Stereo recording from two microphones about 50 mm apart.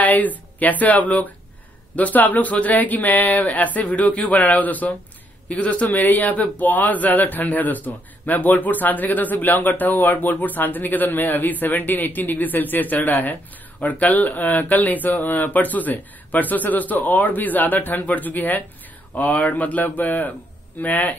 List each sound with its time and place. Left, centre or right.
0.0 s a man's voice: left